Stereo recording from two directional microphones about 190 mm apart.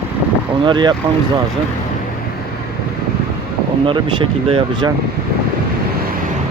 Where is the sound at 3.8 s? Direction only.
25° right (ahead or behind).